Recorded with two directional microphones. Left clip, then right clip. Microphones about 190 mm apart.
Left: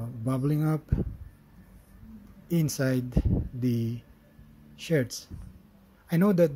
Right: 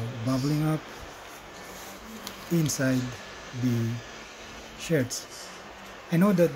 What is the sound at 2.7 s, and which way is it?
Speech, 35° left (ahead or behind).